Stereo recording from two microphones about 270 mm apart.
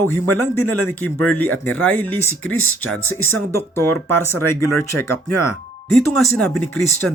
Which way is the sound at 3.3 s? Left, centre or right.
Centre.